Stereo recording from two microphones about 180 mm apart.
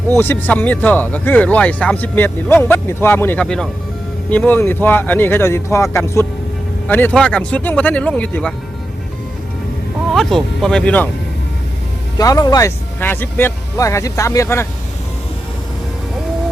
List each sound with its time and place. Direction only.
0.2 s speech: 10° left (ahead or behind)
10.2 s speech: centre (ahead or behind)
12.1 s speech: 20° left (ahead or behind)